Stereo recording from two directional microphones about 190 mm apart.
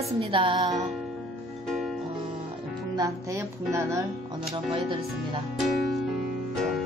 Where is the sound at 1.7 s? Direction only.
Centre (ahead or behind).